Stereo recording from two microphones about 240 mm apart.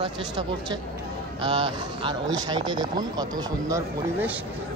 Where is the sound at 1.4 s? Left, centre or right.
Right.